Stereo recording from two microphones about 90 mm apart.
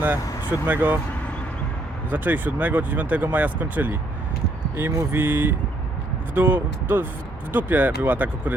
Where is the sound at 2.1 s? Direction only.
20° right (ahead or behind).